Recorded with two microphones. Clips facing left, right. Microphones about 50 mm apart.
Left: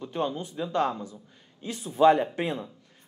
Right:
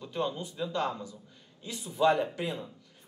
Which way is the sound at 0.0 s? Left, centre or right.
Left.